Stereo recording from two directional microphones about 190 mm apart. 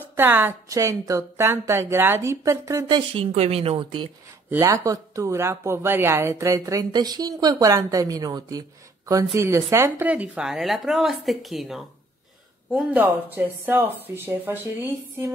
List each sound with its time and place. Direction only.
0.1 s speech: 10° right (ahead or behind)
3.3 s speech: 35° right (ahead or behind)
4.5 s speech: 15° right (ahead or behind)